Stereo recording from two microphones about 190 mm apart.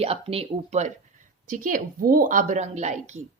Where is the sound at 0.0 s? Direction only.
30° right (ahead or behind).